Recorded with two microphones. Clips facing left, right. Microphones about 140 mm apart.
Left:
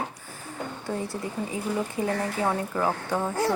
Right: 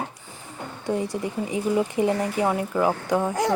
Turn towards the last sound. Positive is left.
turn(degrees=-10)  # may be behind; listen again after turning